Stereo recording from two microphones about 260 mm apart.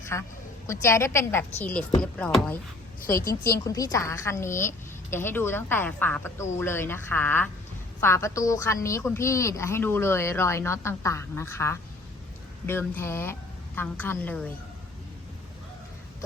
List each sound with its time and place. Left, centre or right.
0.0 s a woman's voice: centre
3.1 s a woman's voice: left
3.6 s a woman's voice: centre